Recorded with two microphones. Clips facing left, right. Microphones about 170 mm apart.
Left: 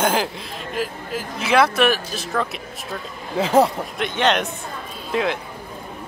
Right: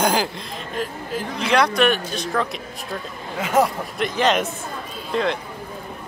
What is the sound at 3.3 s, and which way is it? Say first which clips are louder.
Speech: left 3 dB; 30° left (ahead or behind).